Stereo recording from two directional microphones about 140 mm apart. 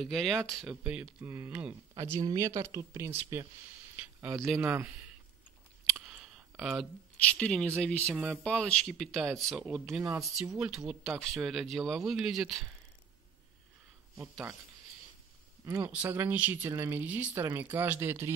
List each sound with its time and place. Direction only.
0.0 s speech: centre (ahead or behind)
0.8 s speech: 10° right (ahead or behind)
3.9 s a sound: 15° right (ahead or behind)
4.6 s speech: 15° right (ahead or behind)
5.9 s a sound: 5° right (ahead or behind)
7.2 s speech: 10° left (ahead or behind)
8.1 s speech: 5° right (ahead or behind)
8.5 s speech: 5° left (ahead or behind)
14.1 s speech: centre (ahead or behind)
15.6 s speech: 25° right (ahead or behind)
15.9 s speech: 15° right (ahead or behind)